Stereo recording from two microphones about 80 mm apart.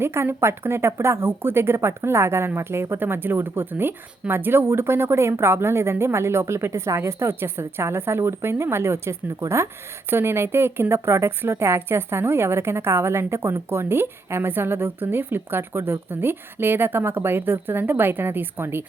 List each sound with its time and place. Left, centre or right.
0.0 s speech: right